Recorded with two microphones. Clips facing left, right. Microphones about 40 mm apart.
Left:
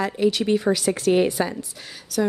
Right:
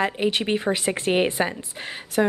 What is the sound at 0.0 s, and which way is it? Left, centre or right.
Speech, right.